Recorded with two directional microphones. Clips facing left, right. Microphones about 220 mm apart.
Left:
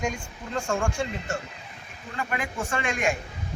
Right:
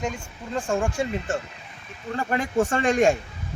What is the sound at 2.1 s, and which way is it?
A man's voice, 40° right (ahead or behind).